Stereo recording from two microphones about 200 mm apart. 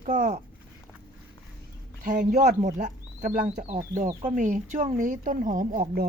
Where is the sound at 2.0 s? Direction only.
35° right (ahead or behind).